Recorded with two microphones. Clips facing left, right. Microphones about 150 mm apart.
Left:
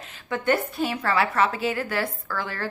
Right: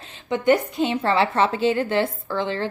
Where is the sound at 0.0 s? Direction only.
25° right (ahead or behind).